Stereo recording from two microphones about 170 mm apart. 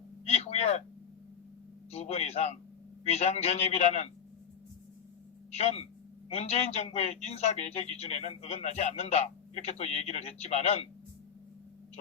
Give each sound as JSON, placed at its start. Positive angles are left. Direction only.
{"t": 0.3, "sound": "a sound", "side_deg": 40}
{"t": 1.9, "sound": "a man's voice", "side_deg": 35}
{"t": 5.5, "sound": "a man's voice", "side_deg": 40}